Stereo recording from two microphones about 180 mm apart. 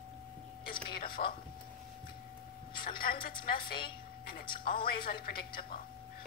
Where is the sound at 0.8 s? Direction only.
55° left (ahead or behind).